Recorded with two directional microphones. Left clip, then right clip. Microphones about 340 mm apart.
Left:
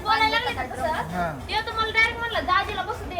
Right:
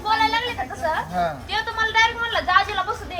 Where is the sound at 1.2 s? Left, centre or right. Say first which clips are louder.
Right 3 dB; right.